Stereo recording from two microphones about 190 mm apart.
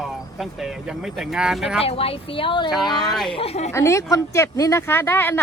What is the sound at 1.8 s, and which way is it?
Speech, 30° left (ahead or behind).